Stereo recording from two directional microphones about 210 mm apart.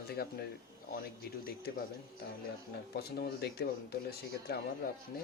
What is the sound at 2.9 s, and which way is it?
Speech, 50° left (ahead or behind).